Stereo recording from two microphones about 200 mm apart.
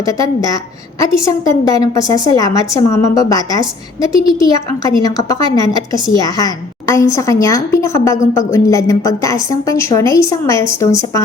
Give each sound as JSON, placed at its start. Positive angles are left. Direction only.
{"t": 0.0, "sound": "a woman's voice", "side_deg": 15}